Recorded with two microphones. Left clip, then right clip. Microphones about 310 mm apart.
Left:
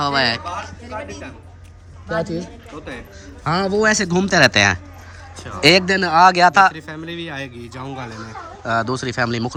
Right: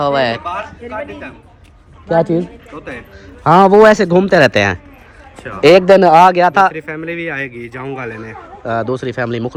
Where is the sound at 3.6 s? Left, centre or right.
Right.